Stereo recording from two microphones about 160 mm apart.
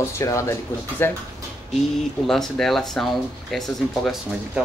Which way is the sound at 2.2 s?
5° left (ahead or behind).